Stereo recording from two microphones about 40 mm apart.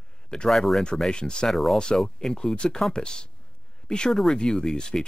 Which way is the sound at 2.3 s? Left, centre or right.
Left.